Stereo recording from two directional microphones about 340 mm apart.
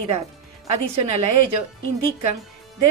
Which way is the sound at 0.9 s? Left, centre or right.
Right.